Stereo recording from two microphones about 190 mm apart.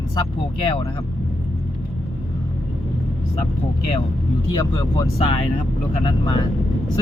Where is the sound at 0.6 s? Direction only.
30° left (ahead or behind).